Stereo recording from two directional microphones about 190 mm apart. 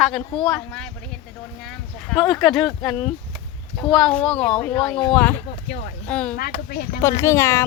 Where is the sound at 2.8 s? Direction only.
5° left (ahead or behind).